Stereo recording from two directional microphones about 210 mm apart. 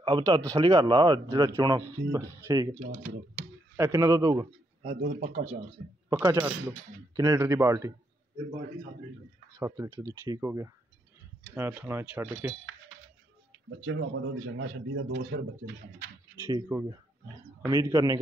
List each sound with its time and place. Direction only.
0.0 s speech: 20° right (ahead or behind)
3.7 s speech: 15° right (ahead or behind)
5.0 s speech: 35° right (ahead or behind)
6.0 s speech: 10° right (ahead or behind)
9.6 s speech: 15° right (ahead or behind)
13.8 s speech: 65° right (ahead or behind)
16.4 s speech: 15° right (ahead or behind)